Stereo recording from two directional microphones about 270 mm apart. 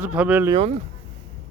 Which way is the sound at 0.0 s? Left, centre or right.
Centre.